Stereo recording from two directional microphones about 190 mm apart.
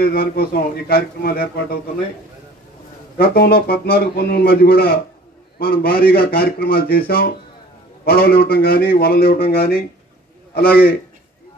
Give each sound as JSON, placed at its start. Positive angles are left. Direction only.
{"t": 0.0, "sound": "a man's voice", "side_deg": 50}
{"t": 3.2, "sound": "a man's voice", "side_deg": 55}